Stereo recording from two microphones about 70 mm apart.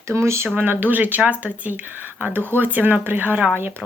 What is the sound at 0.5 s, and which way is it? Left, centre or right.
Speech, right.